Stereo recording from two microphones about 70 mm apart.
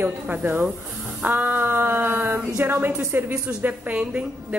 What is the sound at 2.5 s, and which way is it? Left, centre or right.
A woman's voice, right.